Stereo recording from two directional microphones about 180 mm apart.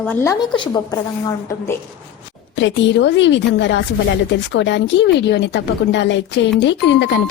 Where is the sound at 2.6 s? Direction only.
80° left.